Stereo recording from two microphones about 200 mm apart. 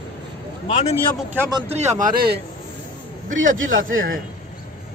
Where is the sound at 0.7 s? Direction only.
35° left (ahead or behind).